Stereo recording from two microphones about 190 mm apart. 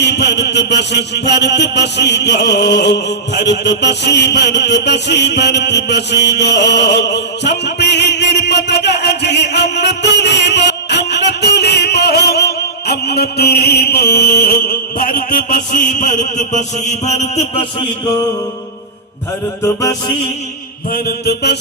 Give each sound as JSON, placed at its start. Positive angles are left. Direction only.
{"t": 0.0, "sound": "mantra", "side_deg": 65}
{"t": 19.6, "sound": "music", "side_deg": 20}
{"t": 20.9, "sound": "mantra", "side_deg": 50}